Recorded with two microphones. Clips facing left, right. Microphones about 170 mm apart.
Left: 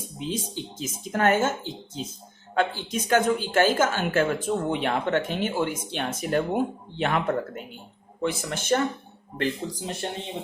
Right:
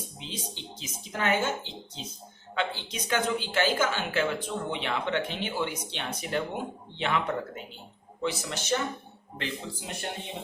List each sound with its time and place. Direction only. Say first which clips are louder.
0.2 s speech: left 11 dB; 45° left (ahead or behind)
9.4 s speech: left 8 dB; 35° left (ahead or behind)